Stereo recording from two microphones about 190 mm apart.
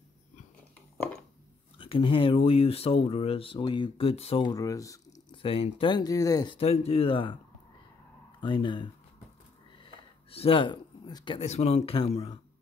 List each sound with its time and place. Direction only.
1.8 s speech: 30° left (ahead or behind)
5.4 s speech: 30° left (ahead or behind)
8.4 s speech: 25° left (ahead or behind)
9.8 s a sound: 30° left (ahead or behind)
11.4 s speech: 35° left (ahead or behind)